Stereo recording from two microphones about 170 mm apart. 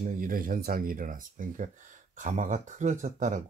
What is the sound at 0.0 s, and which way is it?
Speech, 55° right (ahead or behind).